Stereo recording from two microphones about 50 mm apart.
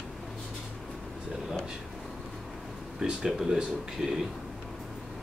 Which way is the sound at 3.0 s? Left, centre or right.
Centre.